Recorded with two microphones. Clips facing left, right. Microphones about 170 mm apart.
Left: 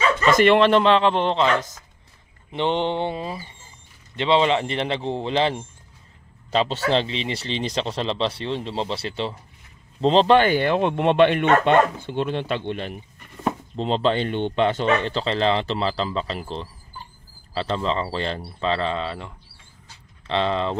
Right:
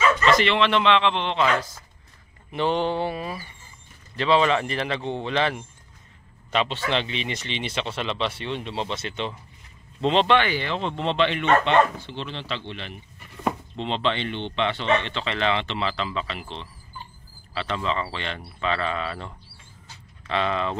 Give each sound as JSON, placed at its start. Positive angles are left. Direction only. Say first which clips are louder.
{"t": 0.3, "sound": "speech", "louder": "left 8 dB", "side_deg": 50}
{"t": 1.3, "sound": "speech", "louder": "left 2 dB", "side_deg": 25}
{"t": 20.2, "sound": "speech", "louder": "left 3 dB", "side_deg": 30}